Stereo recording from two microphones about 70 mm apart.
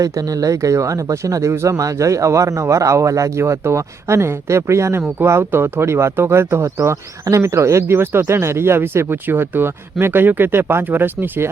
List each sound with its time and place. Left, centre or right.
0.0 s speech: right